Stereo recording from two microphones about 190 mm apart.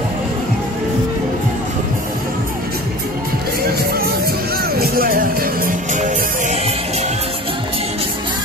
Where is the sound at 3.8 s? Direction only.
55° right (ahead or behind); by 7.1 s 35° right (ahead or behind).